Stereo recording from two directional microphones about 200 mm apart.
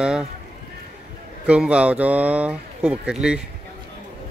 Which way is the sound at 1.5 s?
5° right (ahead or behind).